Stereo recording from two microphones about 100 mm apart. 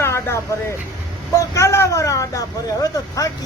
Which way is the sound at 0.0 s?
25° left (ahead or behind).